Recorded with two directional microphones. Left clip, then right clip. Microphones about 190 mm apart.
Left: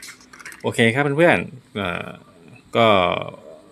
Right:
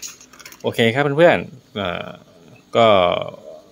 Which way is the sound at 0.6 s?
Centre (ahead or behind).